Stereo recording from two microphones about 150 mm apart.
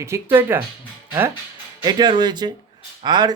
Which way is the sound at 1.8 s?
30° right (ahead or behind).